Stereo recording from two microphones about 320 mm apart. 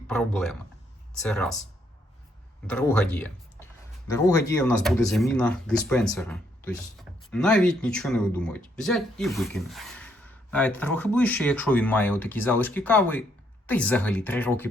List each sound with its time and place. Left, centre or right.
0.1 s speech: centre
2.6 s speech: centre